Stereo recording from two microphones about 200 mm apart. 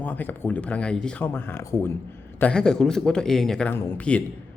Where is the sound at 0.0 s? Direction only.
10° left (ahead or behind).